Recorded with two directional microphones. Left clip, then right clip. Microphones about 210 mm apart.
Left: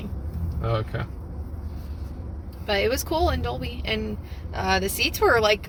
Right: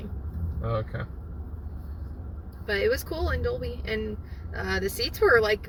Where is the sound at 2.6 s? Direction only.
20° left (ahead or behind).